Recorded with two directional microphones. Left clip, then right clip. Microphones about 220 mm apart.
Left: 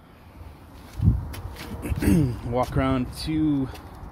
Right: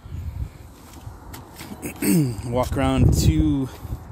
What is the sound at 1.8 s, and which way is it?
Speech, 20° right (ahead or behind).